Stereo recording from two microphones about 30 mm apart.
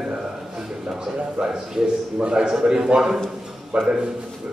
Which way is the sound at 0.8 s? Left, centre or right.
Right.